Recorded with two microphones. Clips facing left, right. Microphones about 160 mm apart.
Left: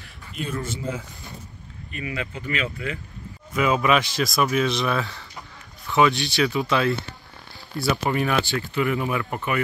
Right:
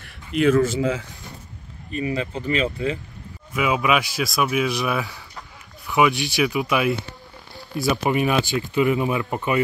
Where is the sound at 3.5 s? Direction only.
5° right (ahead or behind).